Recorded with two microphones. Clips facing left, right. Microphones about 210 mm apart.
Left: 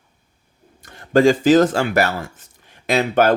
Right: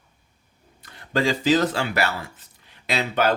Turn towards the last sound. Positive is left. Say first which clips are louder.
# left 6 dB
turn(degrees=50)  # may be behind; listen again after turning